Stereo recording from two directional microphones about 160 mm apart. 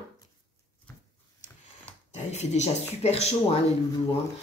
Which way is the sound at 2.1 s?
45° left (ahead or behind).